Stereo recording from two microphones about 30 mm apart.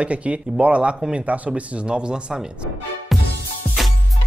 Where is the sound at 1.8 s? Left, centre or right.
Right.